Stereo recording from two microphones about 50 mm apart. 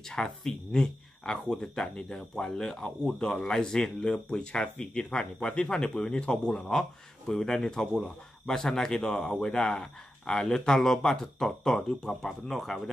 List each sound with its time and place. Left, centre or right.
0.1 s speech: centre
9.5 s speech: centre